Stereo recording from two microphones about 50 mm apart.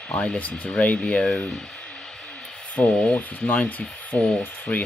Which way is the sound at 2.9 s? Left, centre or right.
Centre.